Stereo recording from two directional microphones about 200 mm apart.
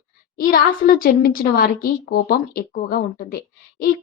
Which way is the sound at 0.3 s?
45° left (ahead or behind).